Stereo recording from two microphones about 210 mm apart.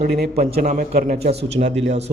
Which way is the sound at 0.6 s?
35° right (ahead or behind).